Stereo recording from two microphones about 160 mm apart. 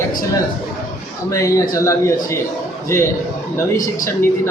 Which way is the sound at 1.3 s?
20° left (ahead or behind).